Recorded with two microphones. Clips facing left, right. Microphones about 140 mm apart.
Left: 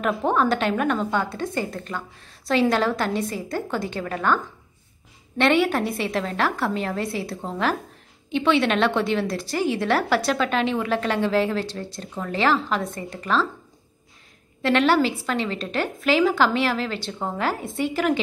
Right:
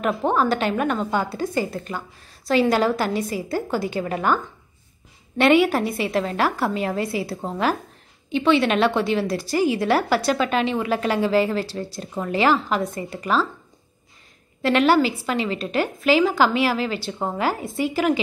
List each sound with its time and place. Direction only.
0.0 s a woman's voice: centre (ahead or behind)
4.0 s a woman's voice: 15° right (ahead or behind)
5.4 s a woman's voice: 5° right (ahead or behind)
14.6 s a woman's voice: 5° right (ahead or behind)